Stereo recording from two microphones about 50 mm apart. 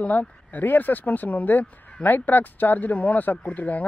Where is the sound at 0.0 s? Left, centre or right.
Left.